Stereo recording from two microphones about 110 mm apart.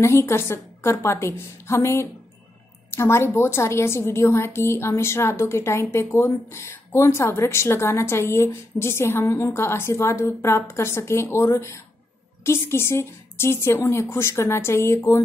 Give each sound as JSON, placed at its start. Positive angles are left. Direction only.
{"t": 0.0, "sound": "a woman's voice", "side_deg": 25}